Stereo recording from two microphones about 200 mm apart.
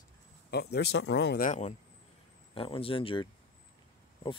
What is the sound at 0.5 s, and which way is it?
Speech, 55° left (ahead or behind).